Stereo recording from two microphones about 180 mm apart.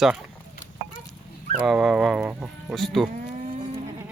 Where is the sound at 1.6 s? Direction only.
5° right (ahead or behind).